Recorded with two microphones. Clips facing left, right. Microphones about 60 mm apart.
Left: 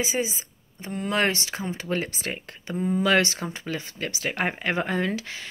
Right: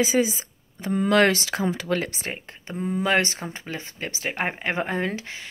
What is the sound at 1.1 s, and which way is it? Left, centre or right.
Speech, right.